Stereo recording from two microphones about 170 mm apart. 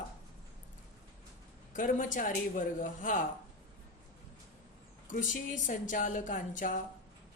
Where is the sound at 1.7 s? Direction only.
50° left (ahead or behind).